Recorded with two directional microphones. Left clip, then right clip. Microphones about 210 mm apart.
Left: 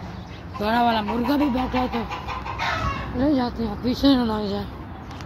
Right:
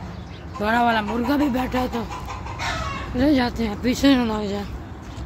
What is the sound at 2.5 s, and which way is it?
Chicken, 20° left (ahead or behind).